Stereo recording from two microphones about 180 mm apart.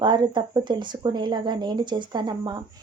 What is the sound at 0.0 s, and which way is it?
Speech, 25° right (ahead or behind).